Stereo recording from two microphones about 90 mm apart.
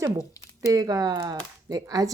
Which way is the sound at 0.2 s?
40° left (ahead or behind).